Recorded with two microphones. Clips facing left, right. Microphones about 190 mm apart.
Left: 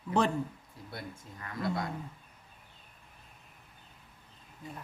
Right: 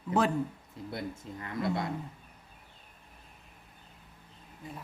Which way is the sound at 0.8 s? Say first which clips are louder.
Right 6 dB; 25° right (ahead or behind).